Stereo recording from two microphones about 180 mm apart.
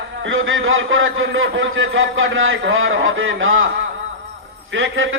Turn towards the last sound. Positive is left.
turn(degrees=-90)